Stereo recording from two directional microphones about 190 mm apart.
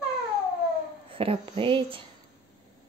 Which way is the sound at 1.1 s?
30° right (ahead or behind).